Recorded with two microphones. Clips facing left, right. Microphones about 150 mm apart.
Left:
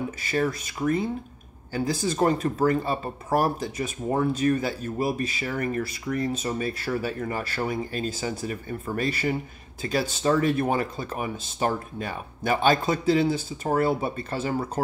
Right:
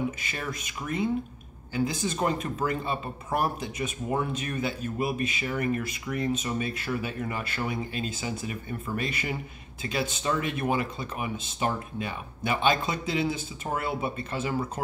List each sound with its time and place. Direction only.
0.2 s speech: 35° left (ahead or behind)